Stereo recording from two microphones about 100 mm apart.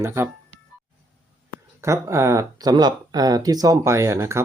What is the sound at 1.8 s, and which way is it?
Speech, 30° right (ahead or behind).